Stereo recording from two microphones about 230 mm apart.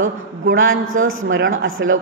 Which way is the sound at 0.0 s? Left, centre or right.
Right.